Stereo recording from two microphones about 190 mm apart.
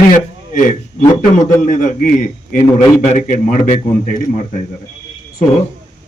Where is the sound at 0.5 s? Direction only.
40° left (ahead or behind).